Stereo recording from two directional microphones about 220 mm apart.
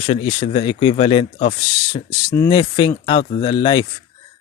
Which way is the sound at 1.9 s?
15° left (ahead or behind).